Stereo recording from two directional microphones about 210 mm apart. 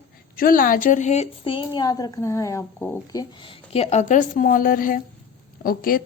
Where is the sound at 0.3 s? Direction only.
45° left (ahead or behind).